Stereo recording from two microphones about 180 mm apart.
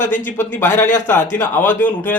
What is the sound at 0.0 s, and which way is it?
Speech, 45° left (ahead or behind).